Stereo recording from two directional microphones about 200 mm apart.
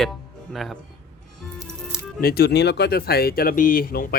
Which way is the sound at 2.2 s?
50° left (ahead or behind).